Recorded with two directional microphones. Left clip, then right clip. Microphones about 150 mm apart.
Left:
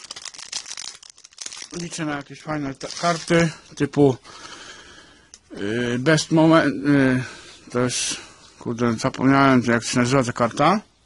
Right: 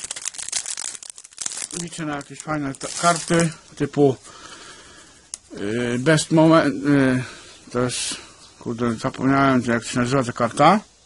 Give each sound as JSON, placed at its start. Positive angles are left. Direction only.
{"t": 2.0, "sound": "speech", "side_deg": 40}
{"t": 5.6, "sound": "speech", "side_deg": 30}
{"t": 10.5, "sound": "speech", "side_deg": 20}